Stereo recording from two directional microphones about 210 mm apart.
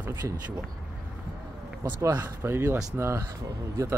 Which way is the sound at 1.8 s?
15° right (ahead or behind).